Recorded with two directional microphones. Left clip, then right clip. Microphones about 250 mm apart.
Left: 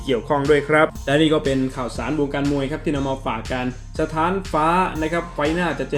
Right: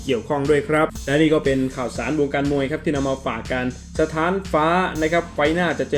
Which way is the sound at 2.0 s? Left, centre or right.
Centre.